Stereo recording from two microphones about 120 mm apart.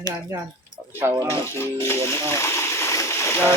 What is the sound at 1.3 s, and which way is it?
Speech, 20° left (ahead or behind).